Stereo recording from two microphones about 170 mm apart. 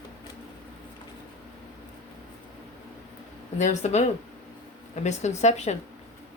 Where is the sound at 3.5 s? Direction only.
45° left (ahead or behind).